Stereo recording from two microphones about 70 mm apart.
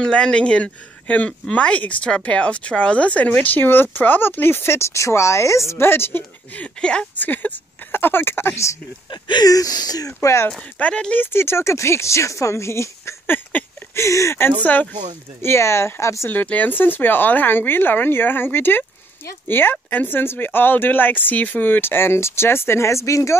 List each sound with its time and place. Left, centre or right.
0.0 s speech: centre; by 6.2 s left
6.5 s speech: centre
7.2 s speech: left
9.1 s speech: left
10.2 s speech: left
10.8 s speech: centre
11.3 s speech: left
13.3 s speech: left
13.9 s speech: left
14.6 s speech: left
15.4 s speech: left
16.3 s speech: left